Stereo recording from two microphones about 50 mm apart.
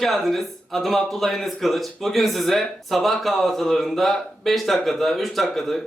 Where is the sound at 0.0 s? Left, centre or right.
Centre.